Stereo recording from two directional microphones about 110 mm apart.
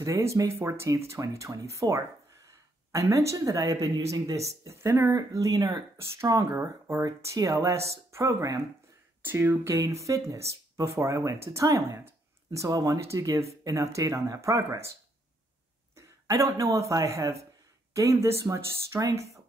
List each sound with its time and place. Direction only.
0.0 s speech: 25° right (ahead or behind)
9.2 s speech: 20° right (ahead or behind)
15.9 s speech: 30° right (ahead or behind)